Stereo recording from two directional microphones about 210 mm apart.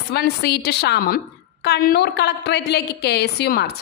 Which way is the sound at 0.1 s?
50° left (ahead or behind).